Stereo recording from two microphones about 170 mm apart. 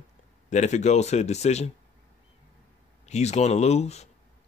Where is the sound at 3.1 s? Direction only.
40° left (ahead or behind).